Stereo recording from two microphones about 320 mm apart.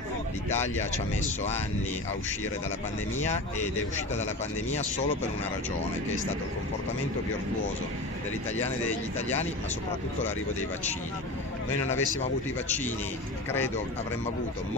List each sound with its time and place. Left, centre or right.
0.9 s speech: left
11.9 s speech: left